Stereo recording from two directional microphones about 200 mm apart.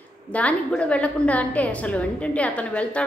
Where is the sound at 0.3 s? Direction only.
5° left (ahead or behind).